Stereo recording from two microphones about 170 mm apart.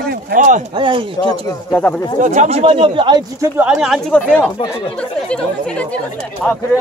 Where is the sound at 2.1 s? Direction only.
45° right (ahead or behind); by 3.2 s 30° right (ahead or behind).